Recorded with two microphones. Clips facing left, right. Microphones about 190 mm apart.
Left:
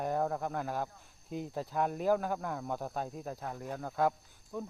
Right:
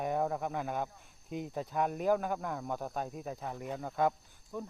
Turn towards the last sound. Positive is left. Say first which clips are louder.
# left 1 dB
turn(degrees=0)  # may be behind; listen again after turning